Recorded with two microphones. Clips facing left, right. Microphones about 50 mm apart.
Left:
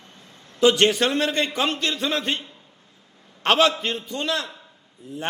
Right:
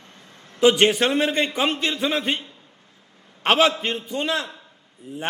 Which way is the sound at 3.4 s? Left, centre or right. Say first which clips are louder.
Even; centre.